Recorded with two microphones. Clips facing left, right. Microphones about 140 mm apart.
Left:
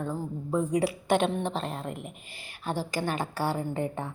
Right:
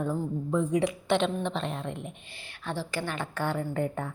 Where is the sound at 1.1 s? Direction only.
45° left (ahead or behind).